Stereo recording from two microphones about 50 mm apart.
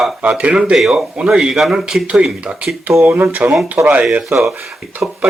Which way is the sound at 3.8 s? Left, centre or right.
Right.